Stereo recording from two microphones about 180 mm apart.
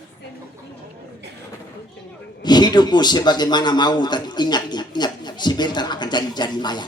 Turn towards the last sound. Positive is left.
turn(degrees=25)  # may be behind; listen again after turning